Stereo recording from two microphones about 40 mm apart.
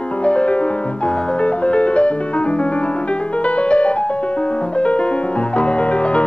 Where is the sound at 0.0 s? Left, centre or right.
Left.